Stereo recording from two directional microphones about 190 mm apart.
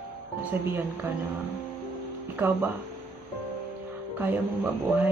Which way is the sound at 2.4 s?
10° right (ahead or behind).